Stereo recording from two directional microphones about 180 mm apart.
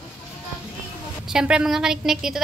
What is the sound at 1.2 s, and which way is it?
A woman's voice, 5° right (ahead or behind).